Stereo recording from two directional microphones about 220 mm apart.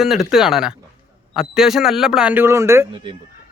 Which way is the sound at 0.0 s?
Centre (ahead or behind).